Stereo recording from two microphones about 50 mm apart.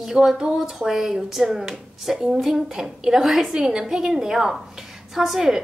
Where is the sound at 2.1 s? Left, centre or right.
Centre.